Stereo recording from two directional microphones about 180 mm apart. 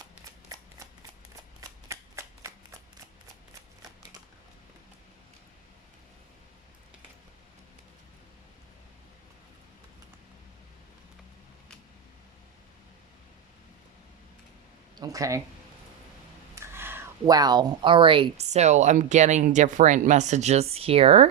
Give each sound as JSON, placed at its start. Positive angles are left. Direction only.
{"t": 1.9, "sound": "shuffling cards", "side_deg": -15}
{"t": 14.9, "sound": "speech", "side_deg": -20}
{"t": 16.6, "sound": "speech", "side_deg": -10}